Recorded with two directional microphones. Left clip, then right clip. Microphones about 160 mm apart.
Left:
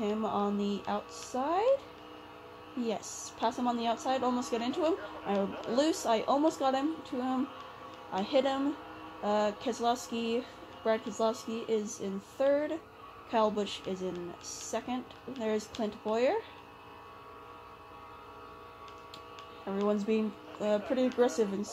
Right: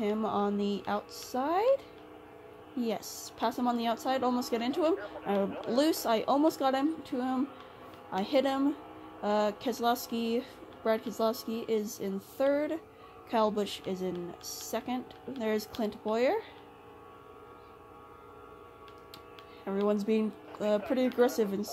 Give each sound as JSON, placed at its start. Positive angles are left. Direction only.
{"t": 0.0, "sound": "a woman's voice", "side_deg": -30}
{"t": 2.8, "sound": "a woman's voice", "side_deg": -30}
{"t": 19.9, "sound": "a woman's voice", "side_deg": -30}